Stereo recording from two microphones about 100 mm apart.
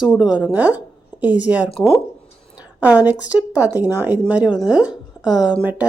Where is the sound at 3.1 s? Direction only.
15° right (ahead or behind).